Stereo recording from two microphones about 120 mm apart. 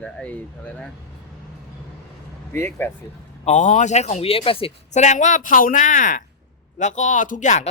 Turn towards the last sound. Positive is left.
turn(degrees=85)